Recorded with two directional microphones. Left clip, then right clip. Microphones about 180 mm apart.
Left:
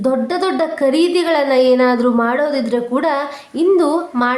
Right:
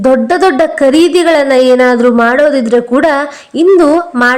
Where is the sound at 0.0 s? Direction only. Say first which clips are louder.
Right 9 dB; 35° right (ahead or behind).